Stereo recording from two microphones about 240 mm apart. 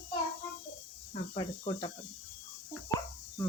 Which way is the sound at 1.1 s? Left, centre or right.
Left.